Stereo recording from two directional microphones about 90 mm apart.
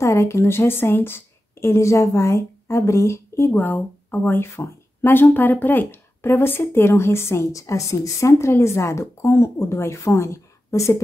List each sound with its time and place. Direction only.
0.0 s a woman's voice: 30° left (ahead or behind)